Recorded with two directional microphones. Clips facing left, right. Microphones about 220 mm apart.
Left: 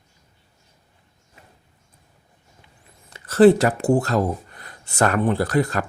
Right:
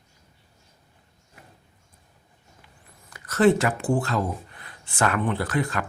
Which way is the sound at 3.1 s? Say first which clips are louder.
Left 6 dB; 30° left (ahead or behind).